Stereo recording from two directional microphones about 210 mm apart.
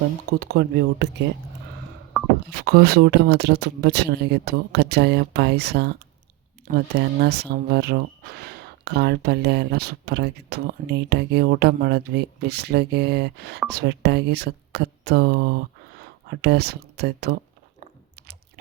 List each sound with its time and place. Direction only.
0.3 s speech: 50° right (ahead or behind)
2.6 s speech: 50° right (ahead or behind)